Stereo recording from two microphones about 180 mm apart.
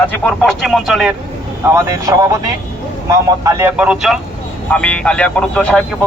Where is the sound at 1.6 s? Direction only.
15° right (ahead or behind); by 5.8 s 5° left (ahead or behind).